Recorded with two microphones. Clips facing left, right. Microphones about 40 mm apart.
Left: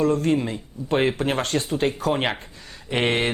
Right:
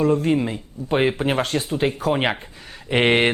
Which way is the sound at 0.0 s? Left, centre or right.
Centre.